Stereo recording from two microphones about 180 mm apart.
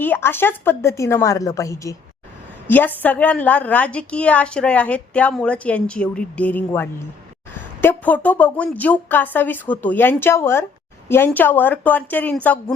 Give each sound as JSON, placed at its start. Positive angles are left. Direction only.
{"t": 0.0, "sound": "a woman's voice", "side_deg": 10}